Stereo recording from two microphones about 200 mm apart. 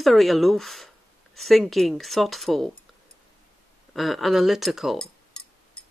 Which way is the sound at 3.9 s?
Centre (ahead or behind).